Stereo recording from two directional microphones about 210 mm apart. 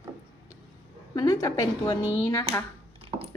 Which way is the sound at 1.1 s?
15° left (ahead or behind).